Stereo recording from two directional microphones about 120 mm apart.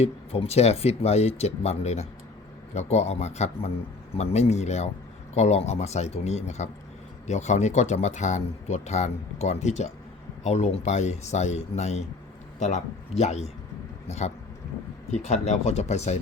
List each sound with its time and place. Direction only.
0.0 s speech: 60° left (ahead or behind)